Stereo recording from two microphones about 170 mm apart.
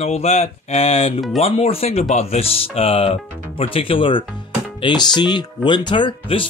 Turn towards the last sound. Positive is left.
turn(degrees=30)  # may be behind; listen again after turning